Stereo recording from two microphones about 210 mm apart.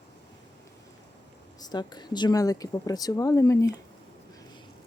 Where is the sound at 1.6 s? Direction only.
20° left (ahead or behind).